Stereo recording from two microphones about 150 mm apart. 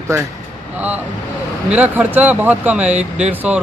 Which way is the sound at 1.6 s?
10° right (ahead or behind).